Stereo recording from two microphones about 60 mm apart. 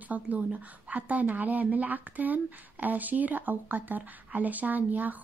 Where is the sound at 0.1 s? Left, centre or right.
Right.